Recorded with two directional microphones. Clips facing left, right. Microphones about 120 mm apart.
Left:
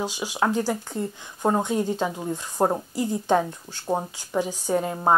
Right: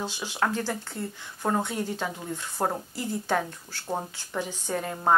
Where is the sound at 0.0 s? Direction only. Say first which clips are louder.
Left 4 dB; 15° left (ahead or behind).